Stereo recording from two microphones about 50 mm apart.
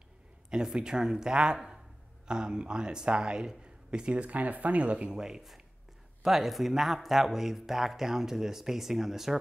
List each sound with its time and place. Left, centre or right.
0.5 s speech: centre
4.3 s speech: right
5.1 s speech: centre